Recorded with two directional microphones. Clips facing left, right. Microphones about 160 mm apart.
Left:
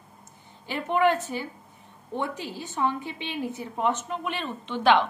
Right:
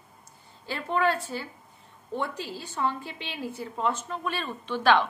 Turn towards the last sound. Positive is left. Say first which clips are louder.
# left 1 dB
turn(degrees=20)  # may be behind; listen again after turning